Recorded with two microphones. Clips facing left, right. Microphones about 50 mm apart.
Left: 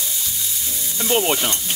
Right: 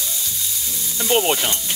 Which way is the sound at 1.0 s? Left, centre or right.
Centre.